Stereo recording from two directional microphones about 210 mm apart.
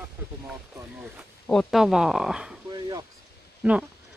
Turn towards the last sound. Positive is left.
turn(degrees=-5)  # may be behind; listen again after turning